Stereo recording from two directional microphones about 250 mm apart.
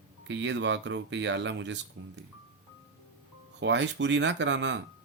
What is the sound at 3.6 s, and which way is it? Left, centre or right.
Speech, right.